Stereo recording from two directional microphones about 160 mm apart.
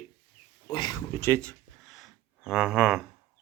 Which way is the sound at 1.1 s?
15° left (ahead or behind).